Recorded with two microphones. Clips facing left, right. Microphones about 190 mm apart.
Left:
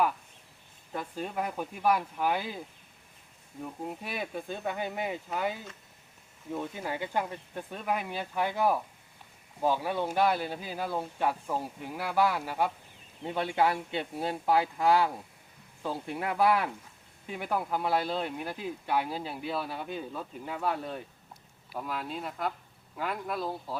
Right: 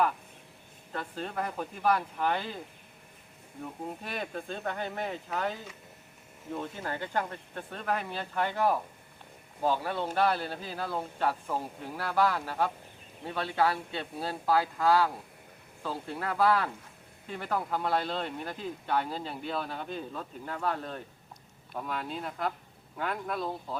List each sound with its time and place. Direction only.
0.9 s speech: 10° left (ahead or behind)
3.8 s speech: 5° left (ahead or behind)